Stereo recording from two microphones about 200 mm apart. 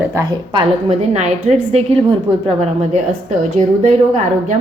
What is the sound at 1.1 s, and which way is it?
A woman's voice, 35° right (ahead or behind).